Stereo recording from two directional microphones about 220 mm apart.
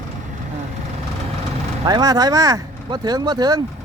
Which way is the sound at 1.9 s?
15° right (ahead or behind).